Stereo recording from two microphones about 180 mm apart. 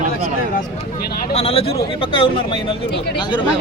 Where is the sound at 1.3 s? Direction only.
35° left (ahead or behind).